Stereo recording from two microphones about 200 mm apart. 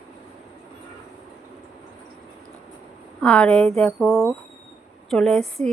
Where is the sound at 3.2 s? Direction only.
5° left (ahead or behind).